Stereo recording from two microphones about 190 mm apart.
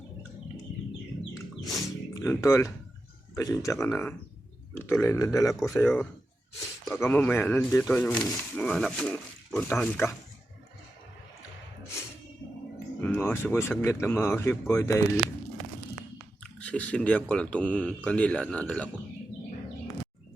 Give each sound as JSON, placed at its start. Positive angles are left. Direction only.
{"t": 1.6, "sound": "a sound", "side_deg": 0}
{"t": 2.1, "sound": "speech", "side_deg": 15}
{"t": 13.0, "sound": "speech", "side_deg": 10}
{"t": 16.4, "sound": "speech", "side_deg": 5}